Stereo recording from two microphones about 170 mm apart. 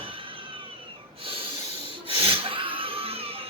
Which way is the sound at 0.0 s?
30° right (ahead or behind).